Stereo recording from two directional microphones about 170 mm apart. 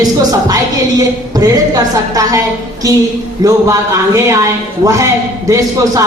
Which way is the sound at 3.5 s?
20° right (ahead or behind).